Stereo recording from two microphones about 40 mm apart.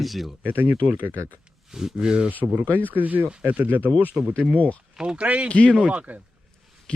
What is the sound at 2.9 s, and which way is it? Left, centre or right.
Speech, right.